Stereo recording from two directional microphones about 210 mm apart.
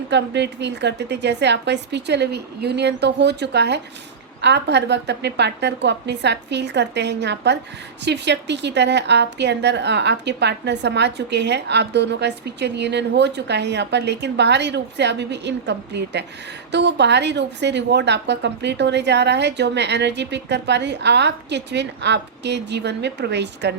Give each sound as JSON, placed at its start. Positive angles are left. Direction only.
{"t": 0.1, "sound": "a woman's voice", "side_deg": -55}